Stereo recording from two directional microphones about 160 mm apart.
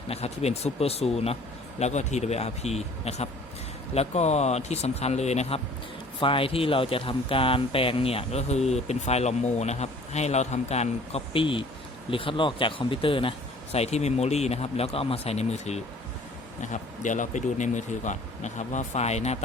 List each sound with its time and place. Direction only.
0.1 s speech: 40° left (ahead or behind)